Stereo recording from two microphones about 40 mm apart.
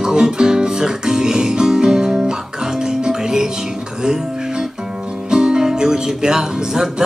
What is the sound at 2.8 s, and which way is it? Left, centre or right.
Music, centre.